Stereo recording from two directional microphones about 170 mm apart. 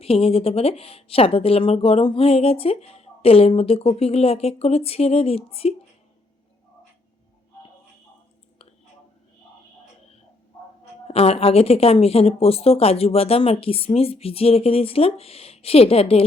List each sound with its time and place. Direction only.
0.0 s speech: 35° left (ahead or behind)
11.1 s speech: 35° left (ahead or behind)